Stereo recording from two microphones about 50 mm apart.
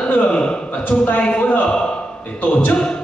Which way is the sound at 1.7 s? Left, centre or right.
Centre.